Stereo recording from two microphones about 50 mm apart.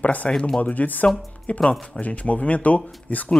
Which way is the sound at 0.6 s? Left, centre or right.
Left.